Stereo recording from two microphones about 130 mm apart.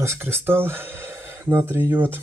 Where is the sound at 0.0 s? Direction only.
20° right (ahead or behind).